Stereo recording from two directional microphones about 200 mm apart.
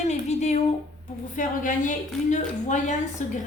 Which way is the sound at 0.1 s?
35° left (ahead or behind).